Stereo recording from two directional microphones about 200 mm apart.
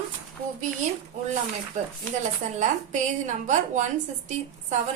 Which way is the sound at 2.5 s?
35° right (ahead or behind).